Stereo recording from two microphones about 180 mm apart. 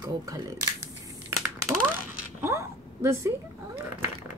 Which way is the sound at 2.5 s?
15° right (ahead or behind).